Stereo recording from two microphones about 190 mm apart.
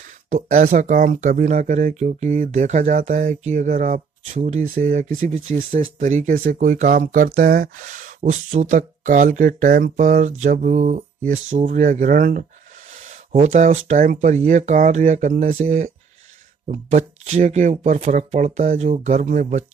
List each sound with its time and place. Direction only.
0.3 s speech: 50° right (ahead or behind)